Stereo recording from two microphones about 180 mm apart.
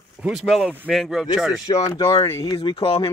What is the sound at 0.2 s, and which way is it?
Speech, 5° right (ahead or behind).